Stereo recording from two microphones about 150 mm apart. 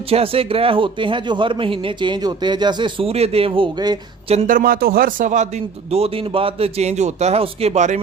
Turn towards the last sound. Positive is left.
turn(degrees=-50)  # may be behind; listen again after turning